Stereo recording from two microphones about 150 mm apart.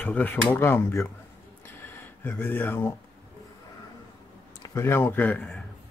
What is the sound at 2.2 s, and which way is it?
Speech, 15° left (ahead or behind).